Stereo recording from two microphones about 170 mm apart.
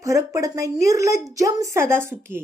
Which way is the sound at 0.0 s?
20° right (ahead or behind).